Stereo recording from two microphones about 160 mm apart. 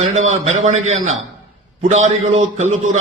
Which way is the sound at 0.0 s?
45° right (ahead or behind).